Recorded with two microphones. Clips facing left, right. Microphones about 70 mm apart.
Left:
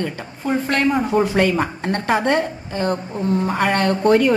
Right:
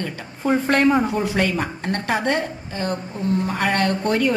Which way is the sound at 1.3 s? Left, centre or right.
Left.